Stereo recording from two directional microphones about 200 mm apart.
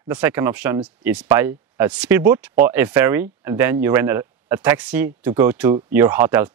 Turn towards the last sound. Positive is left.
turn(degrees=-10)  # may be behind; listen again after turning